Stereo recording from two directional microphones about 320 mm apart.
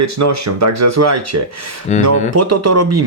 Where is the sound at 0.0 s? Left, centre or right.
Right.